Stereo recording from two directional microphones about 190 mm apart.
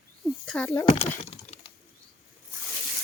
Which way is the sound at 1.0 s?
35° left (ahead or behind).